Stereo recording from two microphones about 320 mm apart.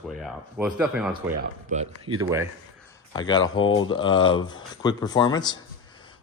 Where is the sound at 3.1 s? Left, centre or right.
Centre.